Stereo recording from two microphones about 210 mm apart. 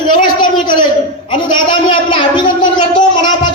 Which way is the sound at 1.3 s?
20° left (ahead or behind).